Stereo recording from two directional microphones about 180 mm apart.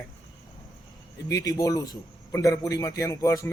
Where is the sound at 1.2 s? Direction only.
20° left (ahead or behind).